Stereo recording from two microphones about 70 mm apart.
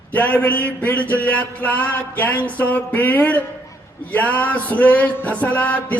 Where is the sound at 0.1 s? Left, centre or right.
Left.